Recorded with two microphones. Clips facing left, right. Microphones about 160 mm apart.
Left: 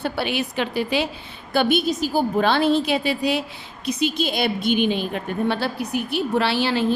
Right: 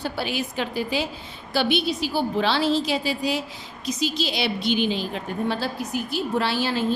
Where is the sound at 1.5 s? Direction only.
50° left (ahead or behind).